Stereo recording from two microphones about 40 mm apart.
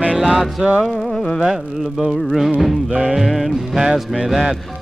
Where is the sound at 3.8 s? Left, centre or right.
Centre.